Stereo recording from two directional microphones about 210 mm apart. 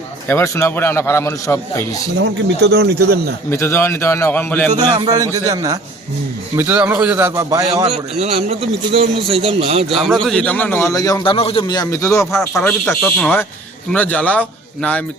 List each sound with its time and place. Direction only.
0.3 s a man's voice: 15° left (ahead or behind)
2.6 s speech: 55° right (ahead or behind)
3.5 s a man's voice: 10° left (ahead or behind)
4.8 s a man's voice: 20° right (ahead or behind)
7.9 s a man's voice: 30° right (ahead or behind)
9.9 s a man's voice: centre (ahead or behind)
12.5 s a man's voice: 5° left (ahead or behind)